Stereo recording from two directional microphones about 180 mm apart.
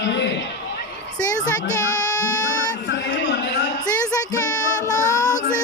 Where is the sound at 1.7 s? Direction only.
20° left (ahead or behind).